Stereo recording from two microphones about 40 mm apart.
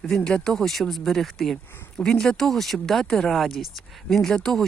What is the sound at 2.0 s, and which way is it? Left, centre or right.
Speech, centre.